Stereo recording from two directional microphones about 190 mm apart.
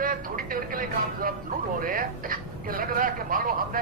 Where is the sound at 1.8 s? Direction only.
45° right (ahead or behind).